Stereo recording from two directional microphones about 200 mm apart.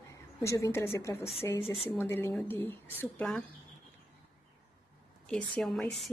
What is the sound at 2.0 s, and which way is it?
A woman's voice, 10° left (ahead or behind).